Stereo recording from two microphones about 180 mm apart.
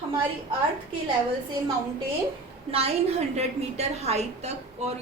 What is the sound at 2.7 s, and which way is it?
A woman's voice, 35° right (ahead or behind).